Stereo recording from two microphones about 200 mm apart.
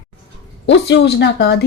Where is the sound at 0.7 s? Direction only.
60° left (ahead or behind).